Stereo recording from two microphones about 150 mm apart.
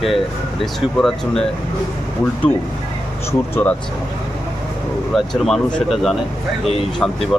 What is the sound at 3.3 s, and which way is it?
Speech, 15° left (ahead or behind).